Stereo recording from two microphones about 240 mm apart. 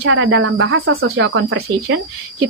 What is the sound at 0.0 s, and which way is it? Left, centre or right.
Speech, right.